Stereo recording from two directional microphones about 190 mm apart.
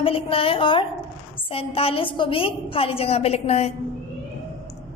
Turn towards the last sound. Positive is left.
turn(degrees=35)  # may be behind; listen again after turning